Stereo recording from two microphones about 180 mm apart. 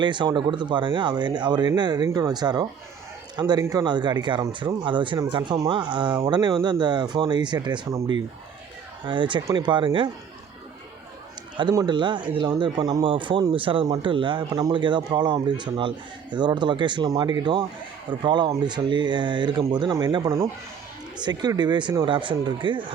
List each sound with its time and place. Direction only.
0.0 s speech: 25° right (ahead or behind)
11.5 s speech: 20° right (ahead or behind)